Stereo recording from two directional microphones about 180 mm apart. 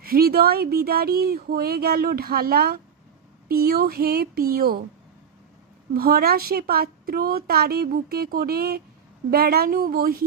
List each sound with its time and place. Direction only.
0.0 s a woman's voice: 55° right (ahead or behind)
5.9 s a woman's voice: 55° right (ahead or behind)